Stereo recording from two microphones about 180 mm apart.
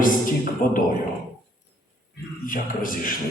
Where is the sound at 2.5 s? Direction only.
50° left (ahead or behind).